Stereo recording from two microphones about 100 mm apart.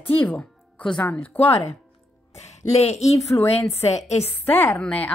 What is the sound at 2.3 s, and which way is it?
A woman's voice, 90° left.